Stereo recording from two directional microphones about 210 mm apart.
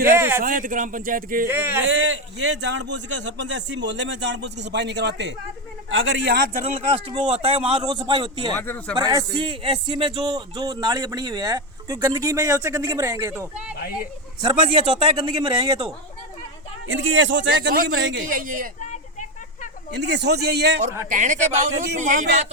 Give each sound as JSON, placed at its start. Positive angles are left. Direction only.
{"t": 0.0, "sound": "a sound", "side_deg": -10}
{"t": 0.4, "sound": "a man's voice", "side_deg": -40}
{"t": 1.5, "sound": "speech", "side_deg": -10}
{"t": 1.8, "sound": "a man's voice", "side_deg": -60}
{"t": 6.3, "sound": "a man's voice", "side_deg": -40}
{"t": 8.5, "sound": "speech", "side_deg": 10}
{"t": 9.0, "sound": "speech", "side_deg": -20}
{"t": 14.4, "sound": "a man's voice", "side_deg": -25}
{"t": 16.9, "sound": "a man's voice", "side_deg": -65}
{"t": 18.3, "sound": "a man's voice", "side_deg": -40}
{"t": 19.9, "sound": "speech", "side_deg": -55}
{"t": 21.1, "sound": "a man's voice", "side_deg": -35}